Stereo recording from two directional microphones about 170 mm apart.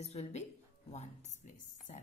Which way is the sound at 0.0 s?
40° left (ahead or behind).